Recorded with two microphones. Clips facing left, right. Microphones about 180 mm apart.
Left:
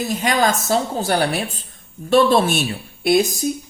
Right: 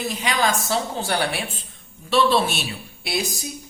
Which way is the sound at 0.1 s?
45° left (ahead or behind).